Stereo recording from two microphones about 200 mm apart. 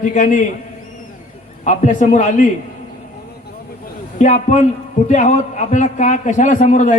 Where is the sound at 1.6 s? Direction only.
40° left (ahead or behind).